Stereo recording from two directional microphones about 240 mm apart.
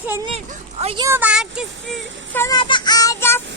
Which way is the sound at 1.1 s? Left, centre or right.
Centre.